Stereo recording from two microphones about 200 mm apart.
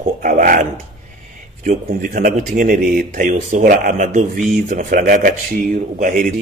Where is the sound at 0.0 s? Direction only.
40° right (ahead or behind).